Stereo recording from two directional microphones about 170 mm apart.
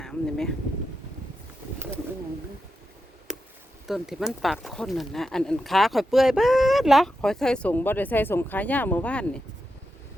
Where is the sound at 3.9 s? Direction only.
Centre (ahead or behind).